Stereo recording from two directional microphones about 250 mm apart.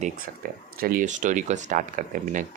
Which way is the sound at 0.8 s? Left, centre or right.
Right.